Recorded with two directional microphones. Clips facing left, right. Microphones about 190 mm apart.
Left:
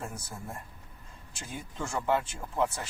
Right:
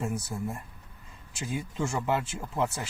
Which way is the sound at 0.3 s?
5° right (ahead or behind).